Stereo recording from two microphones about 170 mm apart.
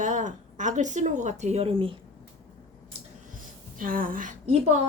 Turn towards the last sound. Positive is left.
turn(degrees=-50)  # may be behind; listen again after turning